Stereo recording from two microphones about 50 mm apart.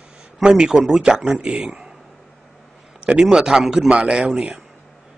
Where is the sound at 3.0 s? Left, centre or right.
Right.